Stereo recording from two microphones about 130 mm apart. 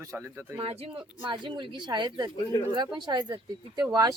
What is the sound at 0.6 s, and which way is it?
Speech, 50° right (ahead or behind).